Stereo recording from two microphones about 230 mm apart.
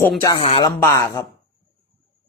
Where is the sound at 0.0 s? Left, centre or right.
Centre.